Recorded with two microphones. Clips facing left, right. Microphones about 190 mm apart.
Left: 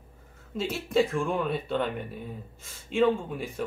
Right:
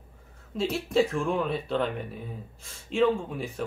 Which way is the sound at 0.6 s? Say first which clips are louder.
Right 1 dB; centre (ahead or behind).